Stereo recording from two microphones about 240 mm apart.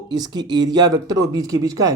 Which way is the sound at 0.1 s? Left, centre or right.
Centre.